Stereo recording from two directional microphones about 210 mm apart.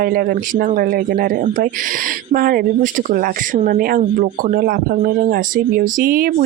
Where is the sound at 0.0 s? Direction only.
45° right (ahead or behind).